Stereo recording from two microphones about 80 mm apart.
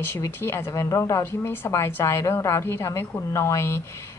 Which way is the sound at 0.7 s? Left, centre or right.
Left.